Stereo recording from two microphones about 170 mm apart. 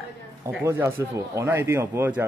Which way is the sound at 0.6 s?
15° right (ahead or behind).